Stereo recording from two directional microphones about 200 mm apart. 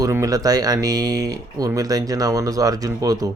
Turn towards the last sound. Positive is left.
turn(degrees=-20)  # may be behind; listen again after turning